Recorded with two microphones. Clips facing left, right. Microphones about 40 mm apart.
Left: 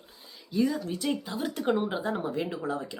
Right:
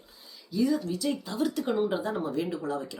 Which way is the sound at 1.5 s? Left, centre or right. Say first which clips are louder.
Left 4 dB; left.